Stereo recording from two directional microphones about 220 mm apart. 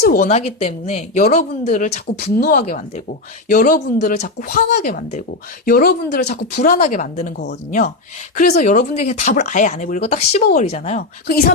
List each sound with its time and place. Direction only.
0.0 s speech: 40° left (ahead or behind)
8.4 s speech: 35° left (ahead or behind)
11.3 s speech: 40° left (ahead or behind)